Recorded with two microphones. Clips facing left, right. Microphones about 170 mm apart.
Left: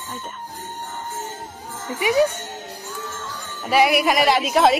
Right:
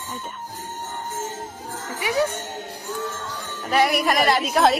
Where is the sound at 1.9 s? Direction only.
15° left (ahead or behind).